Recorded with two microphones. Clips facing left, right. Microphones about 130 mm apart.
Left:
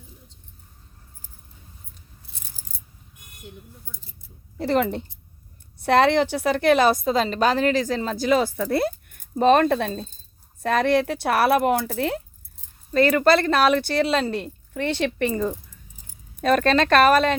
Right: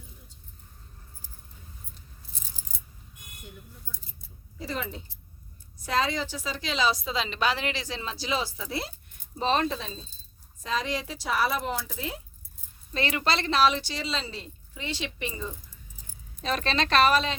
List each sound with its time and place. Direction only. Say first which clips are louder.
4.5 s a woman's voice: left 12 dB; 60° left (ahead or behind)
12.9 s a woman's voice: left 11 dB; 50° left (ahead or behind)